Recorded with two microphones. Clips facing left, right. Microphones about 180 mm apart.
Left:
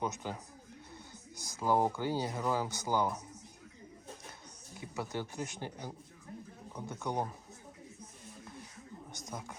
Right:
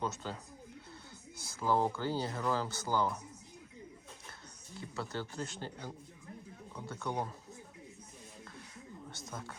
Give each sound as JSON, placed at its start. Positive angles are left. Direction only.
{"t": 0.0, "sound": "speech", "side_deg": 15}
{"t": 1.4, "sound": "speech", "side_deg": 15}
{"t": 4.8, "sound": "speech", "side_deg": 15}
{"t": 9.0, "sound": "speech", "side_deg": 15}